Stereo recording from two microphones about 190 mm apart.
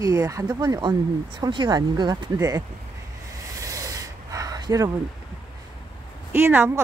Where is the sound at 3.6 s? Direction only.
15° right (ahead or behind).